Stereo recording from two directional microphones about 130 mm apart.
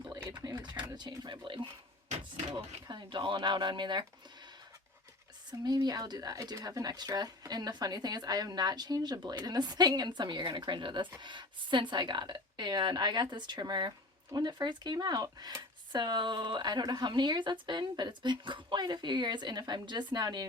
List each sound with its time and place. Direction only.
0.3 s speech: 30° right (ahead or behind)
2.0 s speech: 65° right (ahead or behind)
2.8 s speech: 35° right (ahead or behind)
5.5 s speech: 30° right (ahead or behind)